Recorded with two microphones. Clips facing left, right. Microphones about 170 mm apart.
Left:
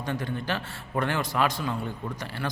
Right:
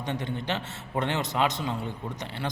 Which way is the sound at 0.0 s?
20° right (ahead or behind).